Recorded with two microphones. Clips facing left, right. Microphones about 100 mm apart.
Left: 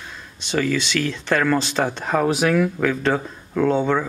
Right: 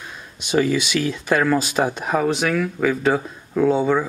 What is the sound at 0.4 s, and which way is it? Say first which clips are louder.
Speech: right 3 dB; 15° right (ahead or behind).